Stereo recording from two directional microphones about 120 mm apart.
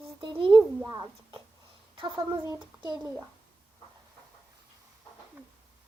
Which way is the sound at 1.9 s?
45° right (ahead or behind).